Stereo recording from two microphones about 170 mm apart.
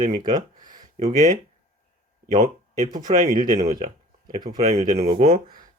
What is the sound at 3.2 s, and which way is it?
Speech, 55° right (ahead or behind).